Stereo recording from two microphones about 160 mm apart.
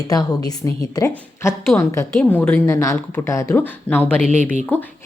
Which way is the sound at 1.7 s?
10° left (ahead or behind).